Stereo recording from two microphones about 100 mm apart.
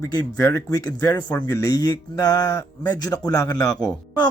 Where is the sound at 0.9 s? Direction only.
40° left (ahead or behind).